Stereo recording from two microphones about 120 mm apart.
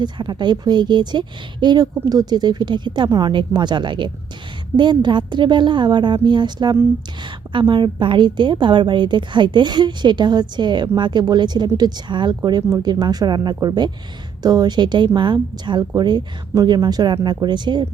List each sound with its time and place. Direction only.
0.0 s a woman's voice: 40° right (ahead or behind)